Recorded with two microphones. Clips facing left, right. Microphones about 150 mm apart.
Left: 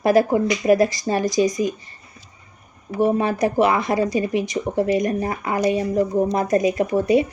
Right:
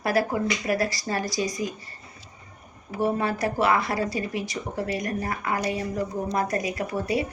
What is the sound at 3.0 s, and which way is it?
Speech, 20° left (ahead or behind).